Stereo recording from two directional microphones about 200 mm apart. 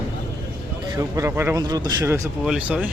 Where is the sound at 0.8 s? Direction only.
15° right (ahead or behind).